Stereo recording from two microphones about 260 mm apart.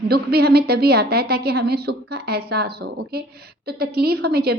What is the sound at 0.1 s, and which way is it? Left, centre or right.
A woman's voice, right.